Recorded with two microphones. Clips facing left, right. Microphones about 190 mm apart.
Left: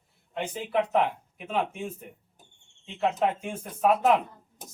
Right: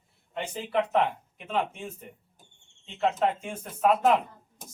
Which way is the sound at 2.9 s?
Centre (ahead or behind).